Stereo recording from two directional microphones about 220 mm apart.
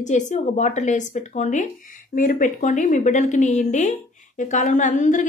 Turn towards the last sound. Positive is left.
turn(degrees=35)  # may be behind; listen again after turning